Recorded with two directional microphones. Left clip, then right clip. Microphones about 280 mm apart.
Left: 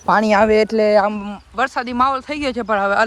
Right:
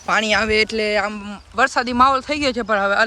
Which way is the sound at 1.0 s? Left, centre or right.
Centre.